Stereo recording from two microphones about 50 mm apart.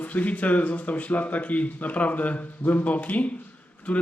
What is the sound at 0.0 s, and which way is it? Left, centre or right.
A man's voice, left.